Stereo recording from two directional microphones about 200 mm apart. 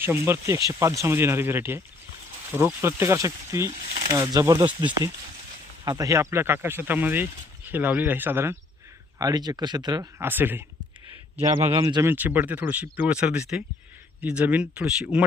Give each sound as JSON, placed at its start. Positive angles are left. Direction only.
{"t": 0.0, "sound": "speech", "side_deg": -10}